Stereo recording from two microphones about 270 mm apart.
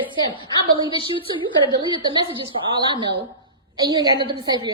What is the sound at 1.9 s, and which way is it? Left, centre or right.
A woman's voice, centre.